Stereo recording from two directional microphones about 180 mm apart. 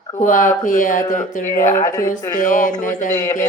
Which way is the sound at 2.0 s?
45° left (ahead or behind).